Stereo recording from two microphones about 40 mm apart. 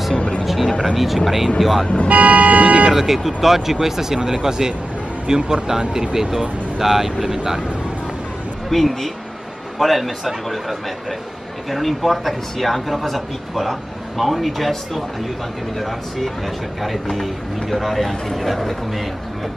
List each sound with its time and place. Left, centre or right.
0.1 s a sound: left
0.5 s a sound: centre
0.9 s speech: centre
2.0 s speech: right
2.9 s speech: centre
8.6 s speech: centre
16.8 s speech: centre